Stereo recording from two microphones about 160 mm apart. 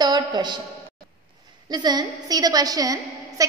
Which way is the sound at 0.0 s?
25° right (ahead or behind).